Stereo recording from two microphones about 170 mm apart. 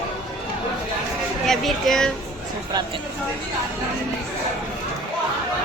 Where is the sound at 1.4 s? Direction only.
Centre (ahead or behind).